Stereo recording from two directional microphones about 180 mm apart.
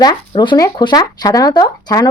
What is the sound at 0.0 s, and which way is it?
Speech, 25° left (ahead or behind).